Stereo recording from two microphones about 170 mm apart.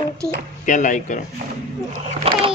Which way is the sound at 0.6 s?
50° left (ahead or behind).